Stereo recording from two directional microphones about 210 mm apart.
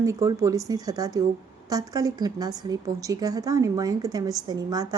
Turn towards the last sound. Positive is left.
turn(degrees=-20)  # may be behind; listen again after turning